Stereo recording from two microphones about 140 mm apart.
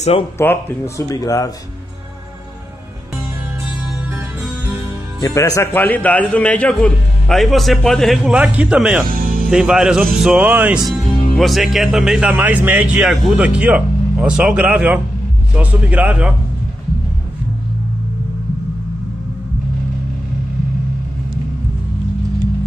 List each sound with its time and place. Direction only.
0.4 s speech: 15° left (ahead or behind)
5.2 s a man's voice: 25° left (ahead or behind); by 9.0 s 5° right (ahead or behind)
9.1 s music: 90° right
9.5 s a man's voice: 5° right (ahead or behind)